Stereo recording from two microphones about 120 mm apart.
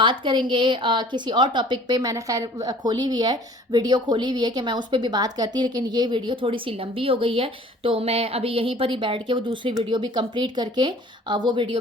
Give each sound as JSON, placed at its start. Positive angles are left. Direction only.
{"t": 0.0, "sound": "a woman's voice", "side_deg": -45}